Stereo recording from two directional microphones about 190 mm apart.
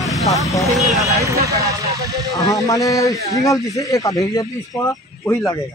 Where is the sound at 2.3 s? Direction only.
20° left (ahead or behind).